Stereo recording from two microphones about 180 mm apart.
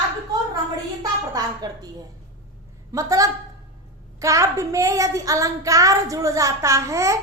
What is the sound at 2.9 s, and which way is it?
A woman's voice, 20° right (ahead or behind).